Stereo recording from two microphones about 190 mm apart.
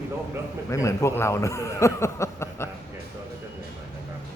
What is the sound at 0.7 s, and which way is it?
A man's voice, 15° left (ahead or behind).